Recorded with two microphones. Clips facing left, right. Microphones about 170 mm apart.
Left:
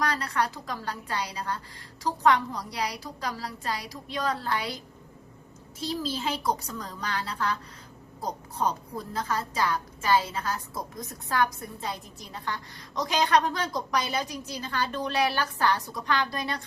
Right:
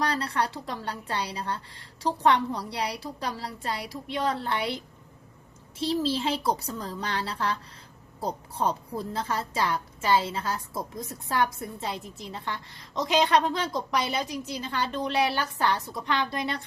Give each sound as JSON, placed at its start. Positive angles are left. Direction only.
{"t": 0.0, "sound": "a woman's voice", "side_deg": -30}
{"t": 5.8, "sound": "a woman's voice", "side_deg": -30}